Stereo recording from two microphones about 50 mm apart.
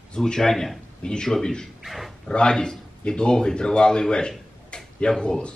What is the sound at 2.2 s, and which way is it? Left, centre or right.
Speech, centre.